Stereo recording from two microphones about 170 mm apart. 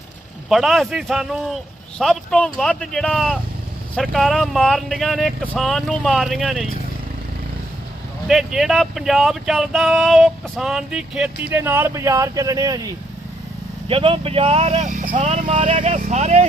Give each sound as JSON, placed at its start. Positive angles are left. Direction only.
{"t": 0.4, "sound": "speech", "side_deg": 0}
{"t": 8.3, "sound": "speech", "side_deg": 0}
{"t": 13.8, "sound": "speech", "side_deg": -30}